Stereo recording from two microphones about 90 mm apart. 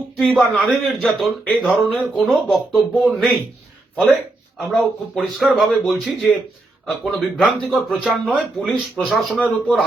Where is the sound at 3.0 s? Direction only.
Centre (ahead or behind).